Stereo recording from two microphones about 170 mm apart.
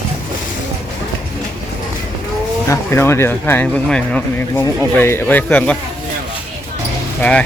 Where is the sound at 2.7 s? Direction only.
15° left (ahead or behind).